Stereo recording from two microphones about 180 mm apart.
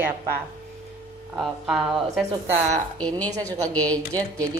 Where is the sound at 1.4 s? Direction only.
Centre (ahead or behind).